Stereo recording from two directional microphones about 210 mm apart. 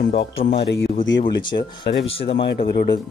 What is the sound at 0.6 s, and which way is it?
Speech, 55° left (ahead or behind).